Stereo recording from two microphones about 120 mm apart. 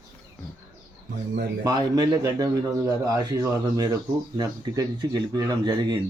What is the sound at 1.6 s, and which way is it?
Speech, 35° right (ahead or behind).